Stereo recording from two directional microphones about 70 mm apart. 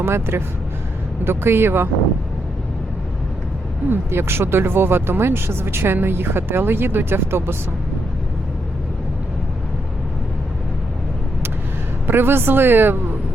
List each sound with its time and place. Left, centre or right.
0.0 s speech: right
3.8 s speech: right
12.0 s speech: right